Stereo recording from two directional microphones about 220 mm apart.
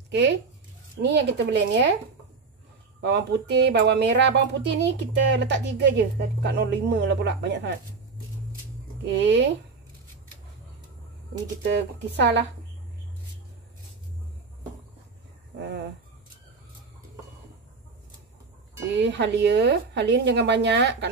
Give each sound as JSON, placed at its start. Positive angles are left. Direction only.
{"t": 0.1, "sound": "speech", "side_deg": -55}
{"t": 3.0, "sound": "speech", "side_deg": -50}
{"t": 9.1, "sound": "speech", "side_deg": -55}
{"t": 11.6, "sound": "speech", "side_deg": -50}
{"t": 15.5, "sound": "speech", "side_deg": -50}
{"t": 18.9, "sound": "speech", "side_deg": -55}